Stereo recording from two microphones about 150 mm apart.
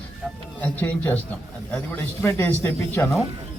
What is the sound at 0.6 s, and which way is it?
Speech, 10° left (ahead or behind).